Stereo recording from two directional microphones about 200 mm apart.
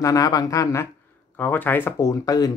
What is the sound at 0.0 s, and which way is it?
Speech, 20° left (ahead or behind).